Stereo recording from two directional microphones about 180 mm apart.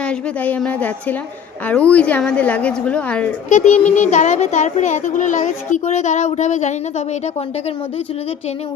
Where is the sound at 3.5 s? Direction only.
40° left (ahead or behind).